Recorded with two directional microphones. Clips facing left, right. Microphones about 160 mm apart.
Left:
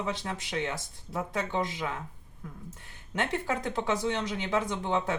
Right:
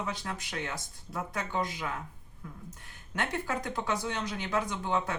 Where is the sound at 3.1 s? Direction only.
25° left (ahead or behind).